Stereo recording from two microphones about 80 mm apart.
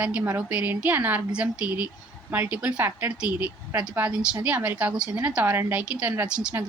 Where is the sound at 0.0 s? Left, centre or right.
Centre.